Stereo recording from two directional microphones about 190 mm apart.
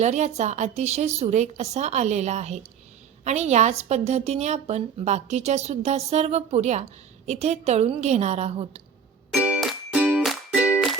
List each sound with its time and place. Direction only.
0.0 s a woman's voice: 35° right (ahead or behind)
9.3 s music: 5° right (ahead or behind)